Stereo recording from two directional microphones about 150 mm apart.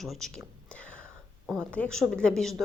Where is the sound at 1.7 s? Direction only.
5° left (ahead or behind).